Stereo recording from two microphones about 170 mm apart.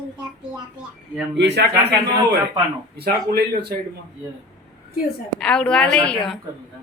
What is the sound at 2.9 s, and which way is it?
Speech, 70° right (ahead or behind).